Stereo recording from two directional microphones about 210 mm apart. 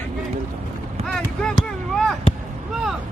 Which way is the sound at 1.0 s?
30° right (ahead or behind).